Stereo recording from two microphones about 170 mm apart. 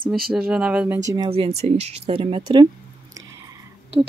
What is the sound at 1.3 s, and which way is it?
Speech, 35° right (ahead or behind).